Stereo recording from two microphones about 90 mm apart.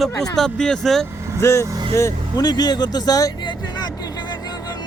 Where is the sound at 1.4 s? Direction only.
35° left (ahead or behind).